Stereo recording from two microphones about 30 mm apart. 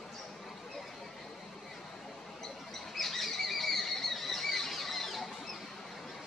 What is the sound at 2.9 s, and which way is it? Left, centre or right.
Squeal, centre.